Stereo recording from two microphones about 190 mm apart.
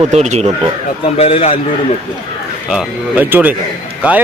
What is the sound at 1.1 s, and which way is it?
Speech, 30° left (ahead or behind).